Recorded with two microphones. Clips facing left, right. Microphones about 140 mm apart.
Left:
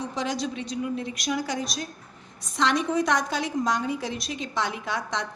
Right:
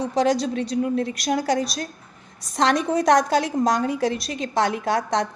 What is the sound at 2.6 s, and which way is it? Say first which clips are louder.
A woman's voice: right 4 dB; 40° right (ahead or behind).